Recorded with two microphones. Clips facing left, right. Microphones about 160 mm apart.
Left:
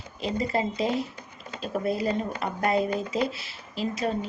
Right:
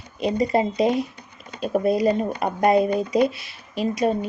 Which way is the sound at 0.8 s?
15° right (ahead or behind).